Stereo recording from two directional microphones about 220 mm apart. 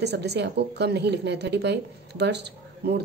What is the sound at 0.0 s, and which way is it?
Speech, 50° right (ahead or behind).